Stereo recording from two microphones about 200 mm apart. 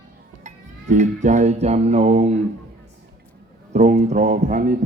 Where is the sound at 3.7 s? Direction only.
35° right (ahead or behind).